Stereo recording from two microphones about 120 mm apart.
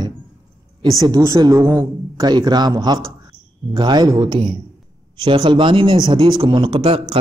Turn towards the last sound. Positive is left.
turn(degrees=-45)  # may be behind; listen again after turning